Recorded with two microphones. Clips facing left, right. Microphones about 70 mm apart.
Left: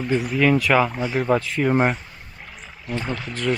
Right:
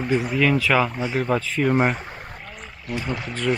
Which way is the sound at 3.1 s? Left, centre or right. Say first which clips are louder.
Even; centre.